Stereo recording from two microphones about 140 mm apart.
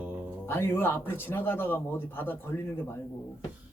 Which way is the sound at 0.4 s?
15° left (ahead or behind).